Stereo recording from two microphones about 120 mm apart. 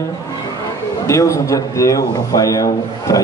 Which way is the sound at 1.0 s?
25° left (ahead or behind).